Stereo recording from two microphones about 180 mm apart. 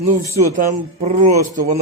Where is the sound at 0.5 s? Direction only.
45° right (ahead or behind).